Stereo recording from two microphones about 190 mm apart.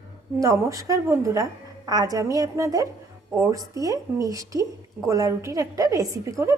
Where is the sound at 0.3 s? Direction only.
15° right (ahead or behind).